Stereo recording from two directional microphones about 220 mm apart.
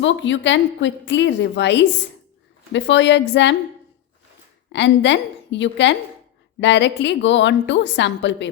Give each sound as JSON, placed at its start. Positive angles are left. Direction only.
{"t": 0.0, "sound": "a woman's voice", "side_deg": 55}
{"t": 4.7, "sound": "a woman's voice", "side_deg": 55}